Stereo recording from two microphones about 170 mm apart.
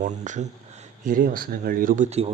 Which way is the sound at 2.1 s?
40° right (ahead or behind).